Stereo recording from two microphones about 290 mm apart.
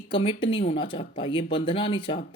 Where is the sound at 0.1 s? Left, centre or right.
Centre.